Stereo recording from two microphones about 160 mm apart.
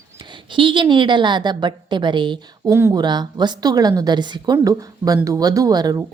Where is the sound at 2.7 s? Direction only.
15° right (ahead or behind).